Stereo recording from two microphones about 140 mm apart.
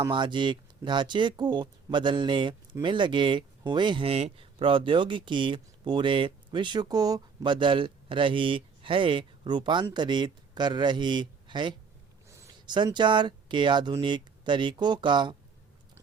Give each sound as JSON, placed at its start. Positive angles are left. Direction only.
{"t": 0.0, "sound": "speech", "side_deg": -35}